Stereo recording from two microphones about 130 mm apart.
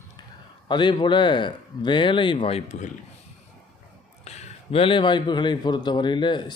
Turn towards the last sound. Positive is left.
turn(degrees=35)  # may be behind; listen again after turning